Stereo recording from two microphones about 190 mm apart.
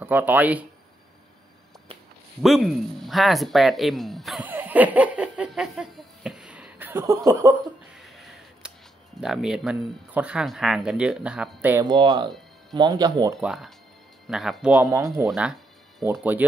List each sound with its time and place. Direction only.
0.0 s speech: 10° right (ahead or behind)
2.4 s speech: centre (ahead or behind)
8.0 s a sound: centre (ahead or behind)
9.2 s speech: centre (ahead or behind)
11.8 s speech: 20° right (ahead or behind)
13.4 s speech: centre (ahead or behind)
14.7 s speech: 15° right (ahead or behind)
15.2 s speech: centre (ahead or behind)